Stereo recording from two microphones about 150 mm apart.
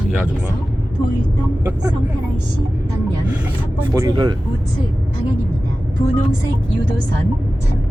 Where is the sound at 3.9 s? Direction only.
25° right (ahead or behind).